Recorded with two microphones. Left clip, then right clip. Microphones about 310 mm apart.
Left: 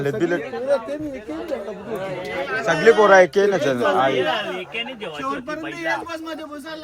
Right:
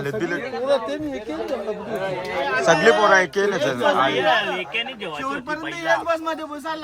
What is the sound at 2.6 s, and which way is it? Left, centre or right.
A man's voice, centre.